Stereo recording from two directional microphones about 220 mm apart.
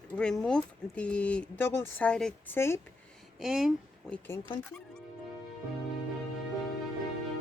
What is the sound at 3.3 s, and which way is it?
Speech, centre (ahead or behind).